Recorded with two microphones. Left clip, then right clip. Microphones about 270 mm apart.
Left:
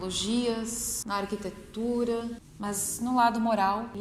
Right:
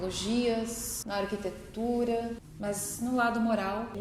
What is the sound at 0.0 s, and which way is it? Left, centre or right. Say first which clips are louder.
Speech: left 1 dB; left.